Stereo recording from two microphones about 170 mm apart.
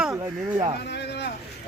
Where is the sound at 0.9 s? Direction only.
80° left.